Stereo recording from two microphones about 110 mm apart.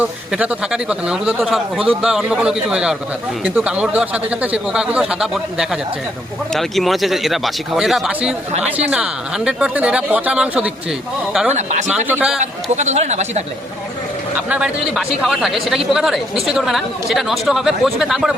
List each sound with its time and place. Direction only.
0.0 s a man's voice: 10° right (ahead or behind)
11.5 s speech: 90° right
11.9 s a man's voice: 15° right (ahead or behind)
12.7 s speech: 90° right
14.5 s speech: 5° right (ahead or behind)